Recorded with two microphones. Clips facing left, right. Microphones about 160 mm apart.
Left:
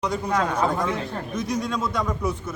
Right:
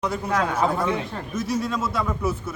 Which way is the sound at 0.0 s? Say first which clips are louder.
Even; 5° right (ahead or behind).